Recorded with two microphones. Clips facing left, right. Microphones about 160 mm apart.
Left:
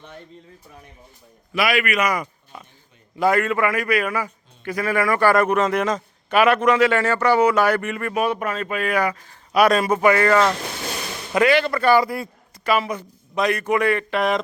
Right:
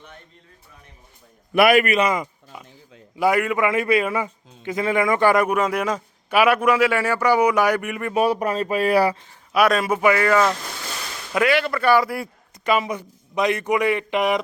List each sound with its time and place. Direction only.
1.5 s a man's voice: 55° right (ahead or behind)
1.8 s a man's voice: 30° right (ahead or behind)
2.2 s a sound: 10° right (ahead or behind)
3.2 s a man's voice: 10° right (ahead or behind)
8.1 s speech: 35° right (ahead or behind)
9.5 s a man's voice: centre (ahead or behind)